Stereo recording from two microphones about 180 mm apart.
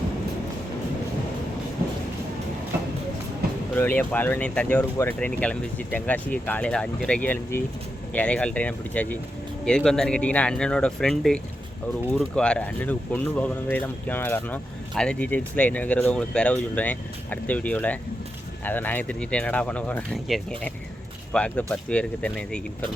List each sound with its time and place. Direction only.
3.4 s music: 60° right (ahead or behind)
3.8 s speech: 10° left (ahead or behind)